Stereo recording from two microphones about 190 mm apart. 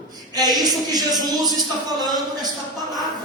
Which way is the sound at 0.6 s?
20° right (ahead or behind).